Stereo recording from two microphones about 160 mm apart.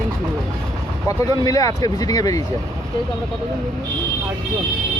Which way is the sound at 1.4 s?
20° left (ahead or behind).